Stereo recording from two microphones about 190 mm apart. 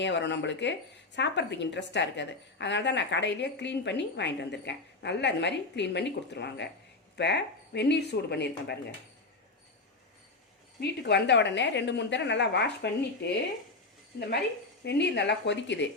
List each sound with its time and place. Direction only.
0.0 s a woman's voice: 70° left (ahead or behind)
10.8 s a woman's voice: 60° left (ahead or behind)
14.8 s speech: 65° left (ahead or behind)